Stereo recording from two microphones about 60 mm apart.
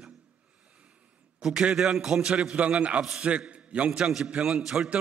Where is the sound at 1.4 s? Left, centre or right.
Centre.